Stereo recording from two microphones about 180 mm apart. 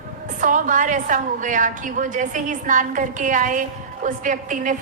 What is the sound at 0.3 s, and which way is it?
A woman's voice, 45° right (ahead or behind).